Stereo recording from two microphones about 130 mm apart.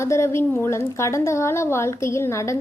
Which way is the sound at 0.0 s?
20° left (ahead or behind).